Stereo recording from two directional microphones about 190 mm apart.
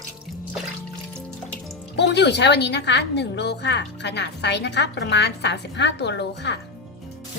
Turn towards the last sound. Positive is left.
turn(degrees=65)  # may be behind; listen again after turning